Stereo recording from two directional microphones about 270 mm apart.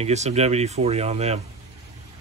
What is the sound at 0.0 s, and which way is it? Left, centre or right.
Speech, right.